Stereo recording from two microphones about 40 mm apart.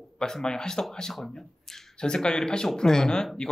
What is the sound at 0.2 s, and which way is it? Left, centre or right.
Speech, centre.